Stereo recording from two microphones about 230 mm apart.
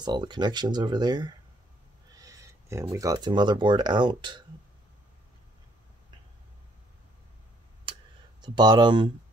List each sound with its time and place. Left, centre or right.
0.0 s speech: centre
8.4 s speech: centre